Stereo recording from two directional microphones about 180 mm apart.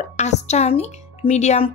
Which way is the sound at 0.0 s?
40° left (ahead or behind).